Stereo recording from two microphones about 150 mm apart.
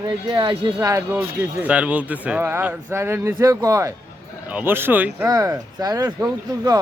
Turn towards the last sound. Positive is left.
turn(degrees=-25)  # may be behind; listen again after turning